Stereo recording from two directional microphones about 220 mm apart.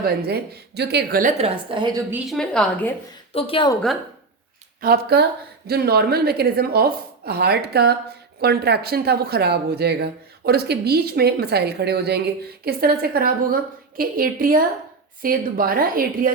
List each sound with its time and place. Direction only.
0.0 s speech: 45° right (ahead or behind)
1.4 s a woman's voice: 25° right (ahead or behind)
2.3 s a woman's voice: 5° left (ahead or behind)
3.3 s a woman's voice: 25° left (ahead or behind)
4.8 s a woman's voice: 45° right (ahead or behind)